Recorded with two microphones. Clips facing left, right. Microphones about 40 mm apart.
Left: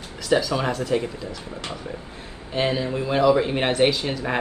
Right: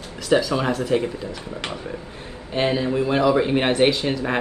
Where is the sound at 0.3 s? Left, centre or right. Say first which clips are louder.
Right 2 dB; centre.